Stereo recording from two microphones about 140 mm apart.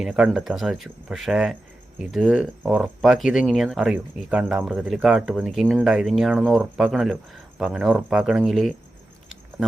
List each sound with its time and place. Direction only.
0.0 s speech: 5° right (ahead or behind)